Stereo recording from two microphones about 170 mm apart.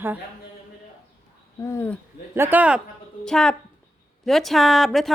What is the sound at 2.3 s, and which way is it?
Speech, 10° right (ahead or behind).